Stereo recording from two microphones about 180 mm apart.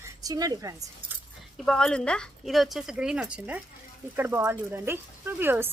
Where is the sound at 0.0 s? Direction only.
20° right (ahead or behind).